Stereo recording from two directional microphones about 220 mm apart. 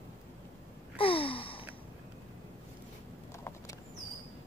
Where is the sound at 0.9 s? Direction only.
25° left (ahead or behind).